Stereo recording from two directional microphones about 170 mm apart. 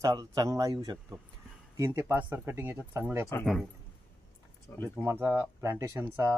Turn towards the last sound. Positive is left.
turn(degrees=-15)  # may be behind; listen again after turning